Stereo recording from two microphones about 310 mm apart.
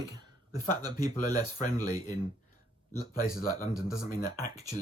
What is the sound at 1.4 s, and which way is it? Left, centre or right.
Speech, left.